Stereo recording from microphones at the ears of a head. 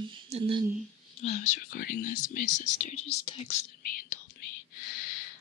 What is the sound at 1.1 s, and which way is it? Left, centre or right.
Whispering, left.